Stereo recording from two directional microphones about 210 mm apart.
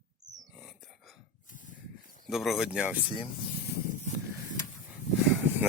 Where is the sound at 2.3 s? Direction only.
Centre (ahead or behind).